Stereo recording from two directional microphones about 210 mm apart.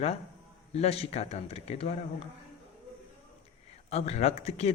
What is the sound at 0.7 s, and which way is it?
A man's voice, 30° left (ahead or behind).